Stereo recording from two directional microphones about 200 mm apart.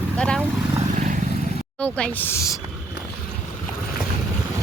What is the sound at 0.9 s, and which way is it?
Vehicle, 40° right (ahead or behind).